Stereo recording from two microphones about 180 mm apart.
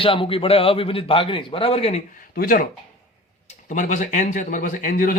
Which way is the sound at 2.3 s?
55° left (ahead or behind).